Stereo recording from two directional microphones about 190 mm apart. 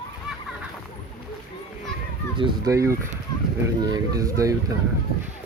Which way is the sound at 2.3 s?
25° right (ahead or behind).